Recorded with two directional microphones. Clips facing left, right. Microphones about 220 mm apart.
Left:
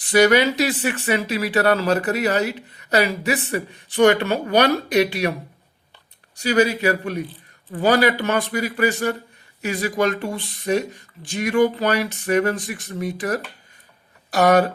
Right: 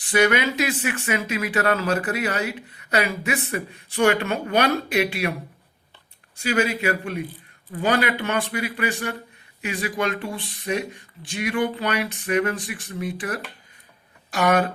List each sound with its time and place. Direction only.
0.0 s speech: 40° left (ahead or behind)
6.3 s speech: 35° left (ahead or behind)